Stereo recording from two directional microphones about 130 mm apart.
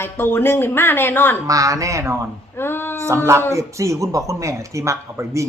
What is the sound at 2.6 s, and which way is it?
Speech, 20° left (ahead or behind).